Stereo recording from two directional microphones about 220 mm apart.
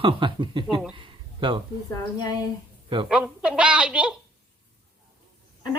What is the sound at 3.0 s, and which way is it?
A woman's voice, 5° right (ahead or behind).